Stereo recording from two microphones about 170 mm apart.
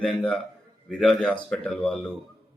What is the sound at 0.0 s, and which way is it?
A woman's voice, 5° left (ahead or behind).